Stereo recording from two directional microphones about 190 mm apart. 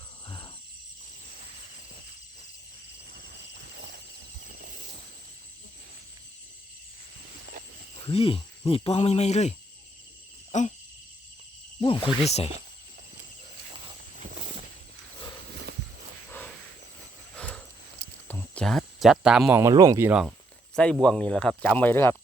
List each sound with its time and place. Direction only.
0.3 s cricket: 25° left (ahead or behind)
3.6 s a sound: 65° right (ahead or behind)
4.4 s train: 50° right (ahead or behind)
8.0 s speech: 30° left (ahead or behind)
10.5 s a sound: 40° left (ahead or behind)
11.8 s speech: 25° left (ahead or behind)
17.3 s a sound: 5° left (ahead or behind)
18.3 s speech: 5° left (ahead or behind)
21.0 s speech: 5° left (ahead or behind)